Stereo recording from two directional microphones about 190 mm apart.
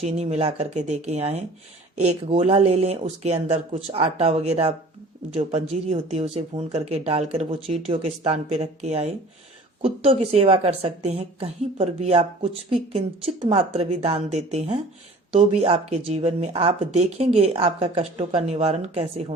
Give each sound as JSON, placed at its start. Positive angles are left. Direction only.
{"t": 0.0, "sound": "speech", "side_deg": -35}